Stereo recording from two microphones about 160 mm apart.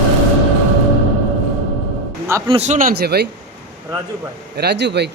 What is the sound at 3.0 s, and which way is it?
Speech, 85° right.